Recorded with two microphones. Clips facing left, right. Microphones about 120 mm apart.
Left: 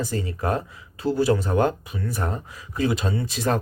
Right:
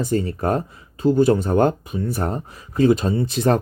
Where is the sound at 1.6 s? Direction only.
55° right (ahead or behind).